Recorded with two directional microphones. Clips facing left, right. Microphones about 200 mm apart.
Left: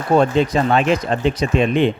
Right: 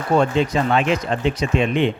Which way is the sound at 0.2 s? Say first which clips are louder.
Left 3 dB; 40° left (ahead or behind).